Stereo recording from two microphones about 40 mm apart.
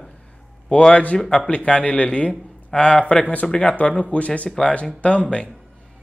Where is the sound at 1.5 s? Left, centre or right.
Left.